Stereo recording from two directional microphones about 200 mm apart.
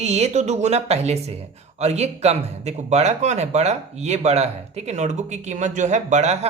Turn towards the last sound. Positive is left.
turn(degrees=-35)  # may be behind; listen again after turning